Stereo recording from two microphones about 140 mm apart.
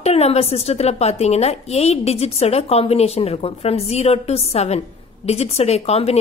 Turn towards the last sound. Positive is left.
turn(degrees=50)  # may be behind; listen again after turning